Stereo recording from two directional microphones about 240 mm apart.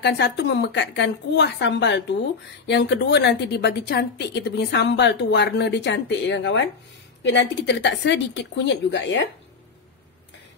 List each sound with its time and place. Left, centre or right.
0.0 s a woman's voice: left